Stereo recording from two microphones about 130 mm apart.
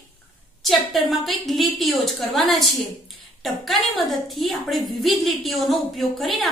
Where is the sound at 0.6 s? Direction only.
Centre (ahead or behind).